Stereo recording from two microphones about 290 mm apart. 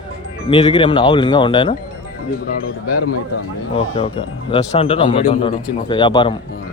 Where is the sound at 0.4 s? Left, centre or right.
Centre.